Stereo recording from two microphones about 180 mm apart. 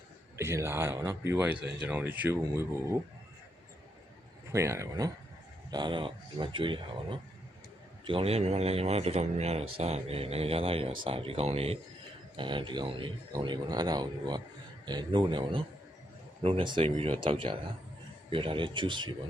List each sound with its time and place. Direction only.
0.3 s speech: 15° right (ahead or behind)
4.5 s a man's voice: 15° right (ahead or behind)